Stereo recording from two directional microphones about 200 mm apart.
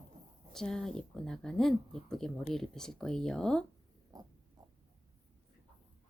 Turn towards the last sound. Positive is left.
turn(degrees=-20)  # may be behind; listen again after turning